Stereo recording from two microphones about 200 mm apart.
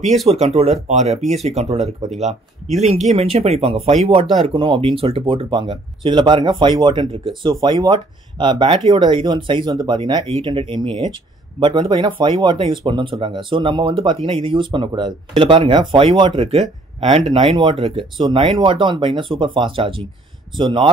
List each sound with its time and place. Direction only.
0.3 s speech: 30° right (ahead or behind)